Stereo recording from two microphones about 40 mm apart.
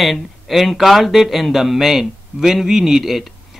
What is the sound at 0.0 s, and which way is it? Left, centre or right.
A man's voice, centre.